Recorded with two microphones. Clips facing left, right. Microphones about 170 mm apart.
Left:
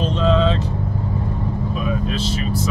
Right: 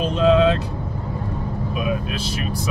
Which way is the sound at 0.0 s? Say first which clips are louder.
Right 2 dB; 10° right (ahead or behind).